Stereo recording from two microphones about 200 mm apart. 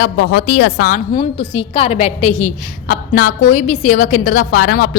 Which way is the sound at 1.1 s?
25° left (ahead or behind).